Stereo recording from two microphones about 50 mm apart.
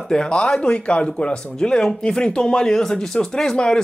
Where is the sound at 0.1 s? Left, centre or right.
Centre.